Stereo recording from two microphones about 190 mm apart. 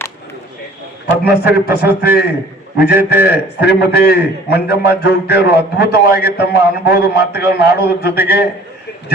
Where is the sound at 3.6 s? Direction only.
55° left (ahead or behind).